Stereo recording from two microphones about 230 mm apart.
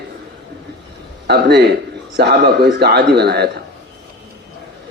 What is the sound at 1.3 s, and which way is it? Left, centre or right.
A man's voice, right.